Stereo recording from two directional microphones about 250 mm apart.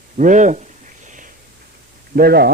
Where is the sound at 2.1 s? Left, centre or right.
Right.